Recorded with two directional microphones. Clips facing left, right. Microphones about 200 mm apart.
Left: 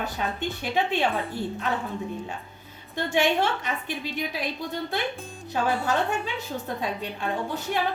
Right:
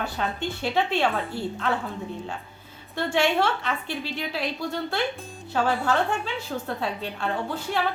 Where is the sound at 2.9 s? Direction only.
15° left (ahead or behind).